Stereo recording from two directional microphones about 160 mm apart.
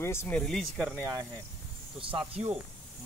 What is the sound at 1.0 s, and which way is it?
Speech, 15° right (ahead or behind).